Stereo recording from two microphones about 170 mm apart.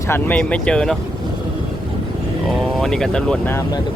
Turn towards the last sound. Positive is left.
turn(degrees=5)  # may be behind; listen again after turning